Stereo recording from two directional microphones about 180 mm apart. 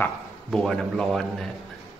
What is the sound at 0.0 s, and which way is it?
A man's voice, centre (ahead or behind).